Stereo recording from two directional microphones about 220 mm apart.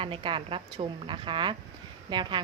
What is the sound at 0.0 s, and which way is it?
A woman's voice, 25° right (ahead or behind).